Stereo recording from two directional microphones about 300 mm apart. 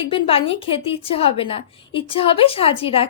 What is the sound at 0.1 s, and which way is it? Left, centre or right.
A woman's voice, centre.